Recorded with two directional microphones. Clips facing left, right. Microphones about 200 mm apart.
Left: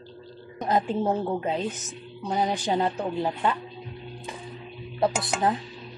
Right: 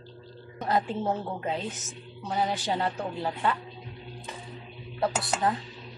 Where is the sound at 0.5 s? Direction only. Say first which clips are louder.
Left 3 dB; 15° left (ahead or behind).